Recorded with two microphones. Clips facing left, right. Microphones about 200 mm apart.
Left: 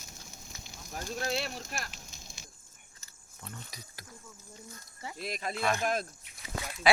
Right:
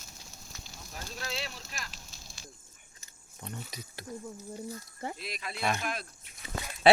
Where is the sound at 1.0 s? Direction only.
50° left (ahead or behind).